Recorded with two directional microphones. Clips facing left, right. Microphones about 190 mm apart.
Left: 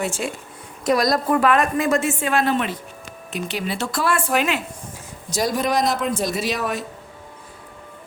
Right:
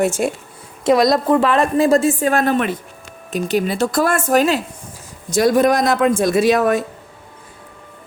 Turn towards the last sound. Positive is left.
turn(degrees=-50)  # may be behind; listen again after turning